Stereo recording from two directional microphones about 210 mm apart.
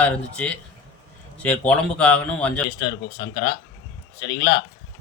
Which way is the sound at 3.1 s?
15° left (ahead or behind).